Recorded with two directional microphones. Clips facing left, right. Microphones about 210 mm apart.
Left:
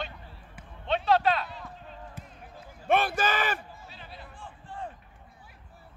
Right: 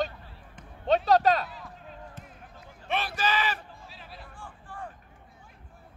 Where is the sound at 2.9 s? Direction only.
50° left (ahead or behind).